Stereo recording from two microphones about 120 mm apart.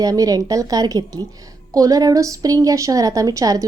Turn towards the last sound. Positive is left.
turn(degrees=-30)  # may be behind; listen again after turning